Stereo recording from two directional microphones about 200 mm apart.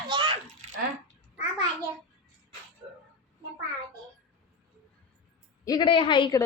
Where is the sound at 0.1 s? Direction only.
25° right (ahead or behind).